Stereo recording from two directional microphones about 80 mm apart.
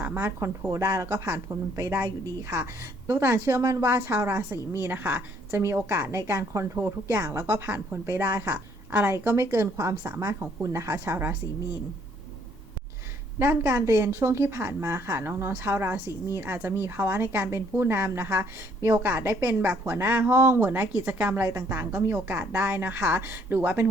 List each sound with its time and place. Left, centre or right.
0.0 s a woman's voice: right
13.4 s a woman's voice: right
21.4 s a woman's voice: right